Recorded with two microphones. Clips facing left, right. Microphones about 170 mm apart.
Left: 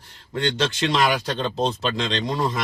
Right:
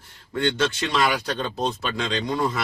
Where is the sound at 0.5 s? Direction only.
25° left (ahead or behind).